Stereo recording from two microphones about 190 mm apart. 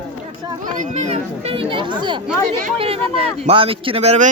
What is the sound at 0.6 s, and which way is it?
A child's voice, 40° right (ahead or behind).